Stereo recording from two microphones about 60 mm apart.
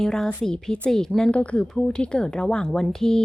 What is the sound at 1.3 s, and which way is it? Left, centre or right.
Speech, centre.